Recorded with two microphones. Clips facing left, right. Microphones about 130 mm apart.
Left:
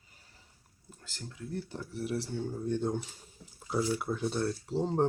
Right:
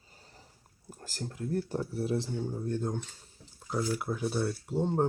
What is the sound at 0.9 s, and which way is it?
Speech, 45° right (ahead or behind).